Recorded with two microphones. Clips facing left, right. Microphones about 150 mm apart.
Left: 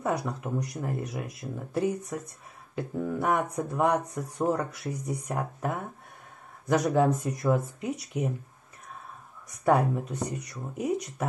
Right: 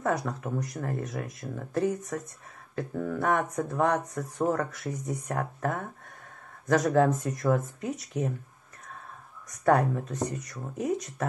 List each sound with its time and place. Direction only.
0.0 s speech: 10° left (ahead or behind)
9.7 s speech: 10° left (ahead or behind)